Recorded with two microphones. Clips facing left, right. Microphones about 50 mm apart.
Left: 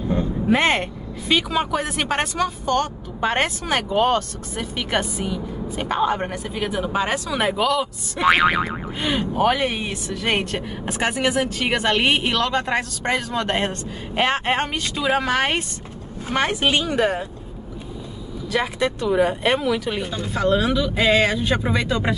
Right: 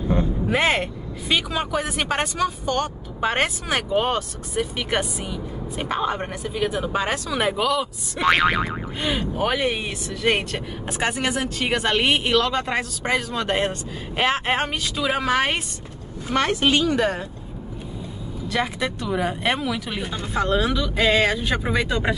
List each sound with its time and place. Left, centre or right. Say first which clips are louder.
0.5 s speech: left 3 dB; centre
16.3 s speech: right 1 dB; centre
18.5 s speech: left 3 dB; centre